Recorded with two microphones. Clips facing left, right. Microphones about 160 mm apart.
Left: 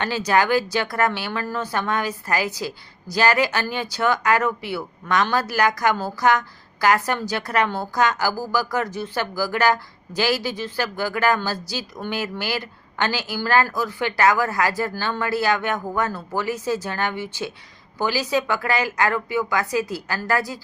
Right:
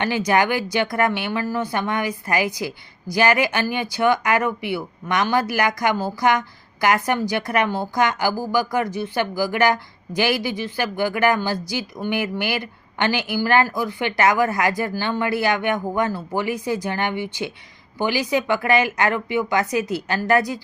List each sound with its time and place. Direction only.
0.0 s speech: 15° right (ahead or behind)